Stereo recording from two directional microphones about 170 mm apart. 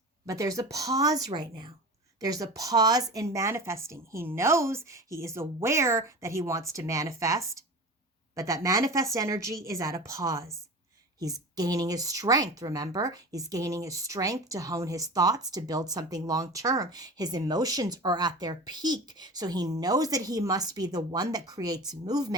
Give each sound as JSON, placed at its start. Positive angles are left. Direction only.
{"t": 0.3, "sound": "speech", "side_deg": -20}